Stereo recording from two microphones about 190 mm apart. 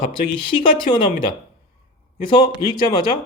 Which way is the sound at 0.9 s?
45° left (ahead or behind).